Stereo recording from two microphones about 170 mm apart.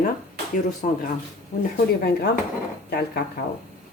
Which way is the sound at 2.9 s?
65° left (ahead or behind).